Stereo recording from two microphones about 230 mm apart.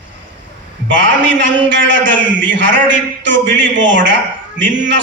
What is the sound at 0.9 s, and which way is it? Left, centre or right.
A man's voice, right.